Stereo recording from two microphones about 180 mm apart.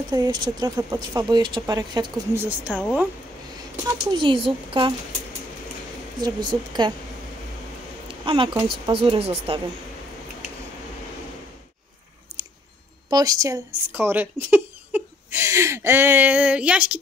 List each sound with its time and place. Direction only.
0.1 s speech: 20° right (ahead or behind)
2.3 s speech: 10° right (ahead or behind)
3.8 s speech: 25° right (ahead or behind)
6.2 s speech: 25° right (ahead or behind)
8.1 s a sound: 30° right (ahead or behind)
8.8 s speech: 30° right (ahead or behind)
12.4 s chewing: 20° right (ahead or behind)
13.1 s speech: 20° right (ahead or behind)